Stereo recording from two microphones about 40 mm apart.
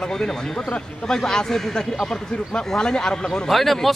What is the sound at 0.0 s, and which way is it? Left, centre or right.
A man's voice, centre.